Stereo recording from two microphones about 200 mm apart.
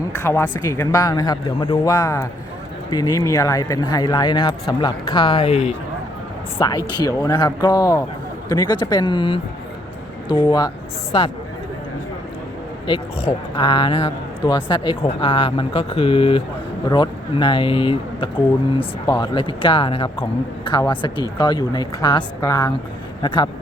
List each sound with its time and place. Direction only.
0.2 s a man's voice: 15° left (ahead or behind)
6.6 s a man's voice: 20° left (ahead or behind)
12.9 s a man's voice: 25° left (ahead or behind)